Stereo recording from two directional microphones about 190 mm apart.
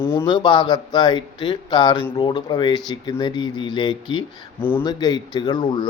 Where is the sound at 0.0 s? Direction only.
10° left (ahead or behind).